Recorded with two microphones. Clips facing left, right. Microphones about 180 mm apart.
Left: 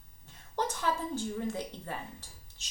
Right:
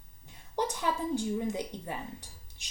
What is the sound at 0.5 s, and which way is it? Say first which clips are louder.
Speech: right 1 dB; 15° right (ahead or behind).